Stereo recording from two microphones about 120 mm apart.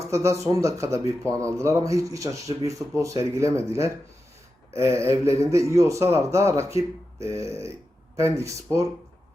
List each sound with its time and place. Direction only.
0.0 s speech: 25° right (ahead or behind)